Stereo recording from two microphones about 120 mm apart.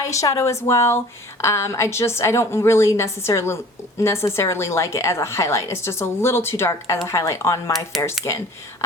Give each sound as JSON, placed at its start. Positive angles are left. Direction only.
{"t": 0.0, "sound": "speech", "side_deg": 25}
{"t": 7.9, "sound": "speech", "side_deg": 0}